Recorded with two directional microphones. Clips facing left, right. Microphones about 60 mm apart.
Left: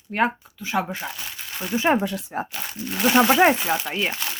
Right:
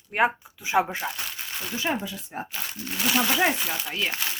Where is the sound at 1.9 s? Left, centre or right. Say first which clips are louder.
Left 8 dB; left.